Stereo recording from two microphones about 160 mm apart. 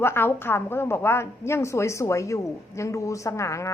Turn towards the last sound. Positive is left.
turn(degrees=20)  # may be behind; listen again after turning